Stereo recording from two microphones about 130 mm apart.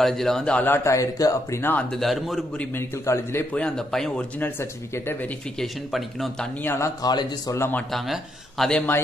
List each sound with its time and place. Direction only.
0.0 s speech: centre (ahead or behind)
0.8 s a man's voice: 25° left (ahead or behind)
1.6 s a man's voice: 10° left (ahead or behind)
3.6 s speech: 5° left (ahead or behind)
4.4 s a man's voice: 15° left (ahead or behind)
5.6 s speech: centre (ahead or behind)
6.6 s a man's voice: 20° left (ahead or behind)
7.0 s a man's voice: 30° left (ahead or behind)
7.9 s speech: centre (ahead or behind)